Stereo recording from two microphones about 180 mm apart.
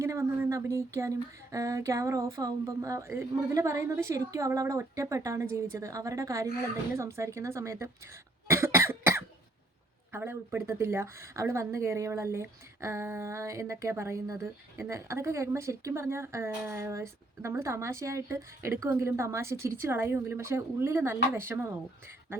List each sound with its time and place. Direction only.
0.0 s a woman's voice: 15° right (ahead or behind)
8.4 s cough: 15° right (ahead or behind)
10.1 s a woman's voice: 10° right (ahead or behind)